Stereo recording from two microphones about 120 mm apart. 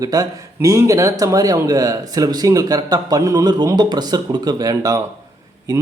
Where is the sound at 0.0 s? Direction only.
30° right (ahead or behind).